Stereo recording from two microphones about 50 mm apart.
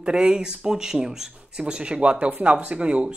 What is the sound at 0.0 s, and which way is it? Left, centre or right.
Speech, centre.